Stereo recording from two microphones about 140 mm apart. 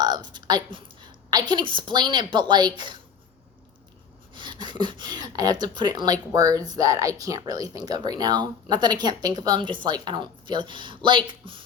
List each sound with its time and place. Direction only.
0.0 s a woman's voice: 30° right (ahead or behind)
4.4 s a woman's voice: 35° right (ahead or behind)